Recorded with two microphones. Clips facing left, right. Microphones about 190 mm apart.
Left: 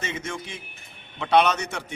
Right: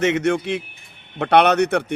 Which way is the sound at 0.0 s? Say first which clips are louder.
Right 14 dB; 70° right (ahead or behind).